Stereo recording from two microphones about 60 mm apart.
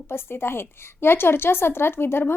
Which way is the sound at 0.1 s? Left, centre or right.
Left.